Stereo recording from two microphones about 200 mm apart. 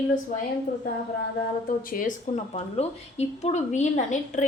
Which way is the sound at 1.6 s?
45° left (ahead or behind).